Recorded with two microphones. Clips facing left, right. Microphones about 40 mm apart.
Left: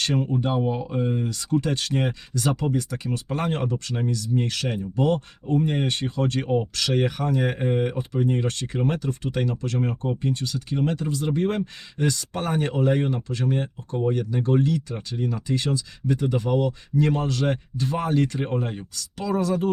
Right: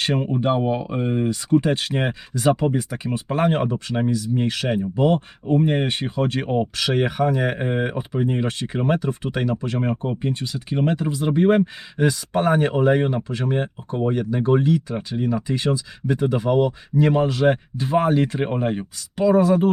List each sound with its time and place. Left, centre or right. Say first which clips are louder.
0.0 s speech: right 3 dB; right